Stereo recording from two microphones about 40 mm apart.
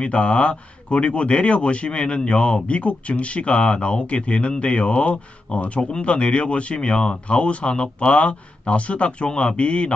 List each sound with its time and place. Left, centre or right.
0.0 s speech: left